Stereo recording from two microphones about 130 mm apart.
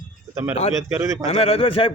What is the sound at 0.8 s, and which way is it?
Speech, 20° right (ahead or behind).